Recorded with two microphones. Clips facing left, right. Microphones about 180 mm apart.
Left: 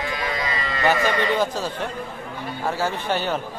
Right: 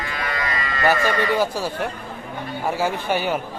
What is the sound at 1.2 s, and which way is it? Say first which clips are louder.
Speech: right 1 dB; 10° right (ahead or behind).